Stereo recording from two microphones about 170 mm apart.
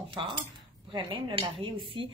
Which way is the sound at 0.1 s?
30° right (ahead or behind).